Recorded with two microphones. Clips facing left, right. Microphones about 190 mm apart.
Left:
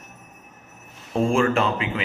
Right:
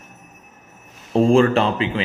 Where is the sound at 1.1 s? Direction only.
35° right (ahead or behind).